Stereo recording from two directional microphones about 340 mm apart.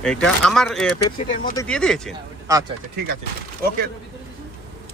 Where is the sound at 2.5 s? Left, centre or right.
Centre.